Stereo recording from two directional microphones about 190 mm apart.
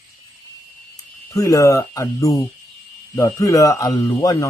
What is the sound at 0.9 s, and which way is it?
A man's voice, 15° left (ahead or behind).